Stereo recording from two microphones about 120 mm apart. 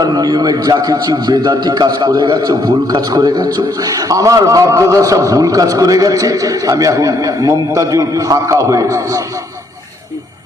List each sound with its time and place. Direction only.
0.0 s a man's voice: 35° right (ahead or behind)